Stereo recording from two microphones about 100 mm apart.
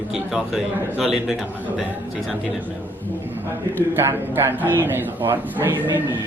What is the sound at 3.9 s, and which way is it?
A man's voice, 25° right (ahead or behind).